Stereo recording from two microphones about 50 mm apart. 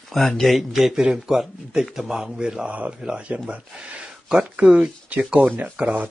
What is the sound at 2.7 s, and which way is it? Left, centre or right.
Speech, right.